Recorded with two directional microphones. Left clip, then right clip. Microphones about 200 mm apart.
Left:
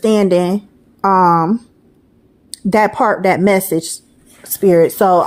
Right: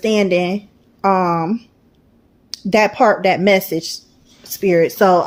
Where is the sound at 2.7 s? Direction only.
25° left (ahead or behind).